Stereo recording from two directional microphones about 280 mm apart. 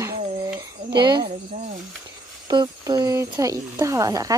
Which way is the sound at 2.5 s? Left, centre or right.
Centre.